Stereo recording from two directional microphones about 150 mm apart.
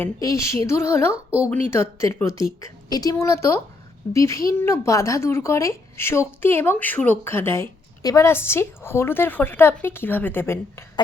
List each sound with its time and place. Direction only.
0.0 s a woman's voice: 20° left (ahead or behind)